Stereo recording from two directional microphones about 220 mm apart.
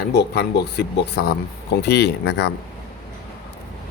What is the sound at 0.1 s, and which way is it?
Speech, 50° left (ahead or behind).